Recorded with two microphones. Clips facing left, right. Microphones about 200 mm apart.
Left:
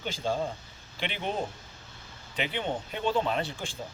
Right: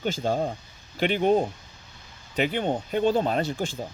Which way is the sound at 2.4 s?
45° right (ahead or behind).